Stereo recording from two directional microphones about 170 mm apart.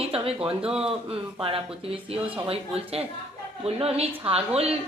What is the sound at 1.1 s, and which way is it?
A woman's voice, 35° right (ahead or behind).